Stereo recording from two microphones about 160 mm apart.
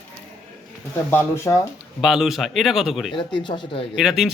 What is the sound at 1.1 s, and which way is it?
Speech, 15° left (ahead or behind).